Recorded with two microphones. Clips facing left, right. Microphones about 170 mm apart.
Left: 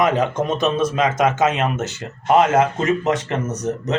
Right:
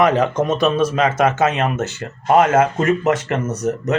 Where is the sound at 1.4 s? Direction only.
20° left (ahead or behind).